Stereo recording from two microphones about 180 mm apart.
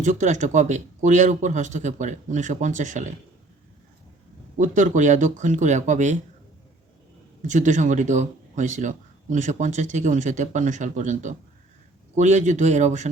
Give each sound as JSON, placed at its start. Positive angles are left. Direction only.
{"t": 0.0, "sound": "speech", "side_deg": -45}
{"t": 4.5, "sound": "speech", "side_deg": -45}
{"t": 7.4, "sound": "speech", "side_deg": -45}